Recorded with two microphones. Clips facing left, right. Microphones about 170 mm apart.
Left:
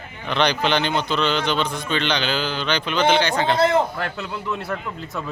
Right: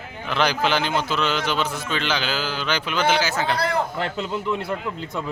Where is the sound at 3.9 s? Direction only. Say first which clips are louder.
Right 2 dB; 25° right (ahead or behind).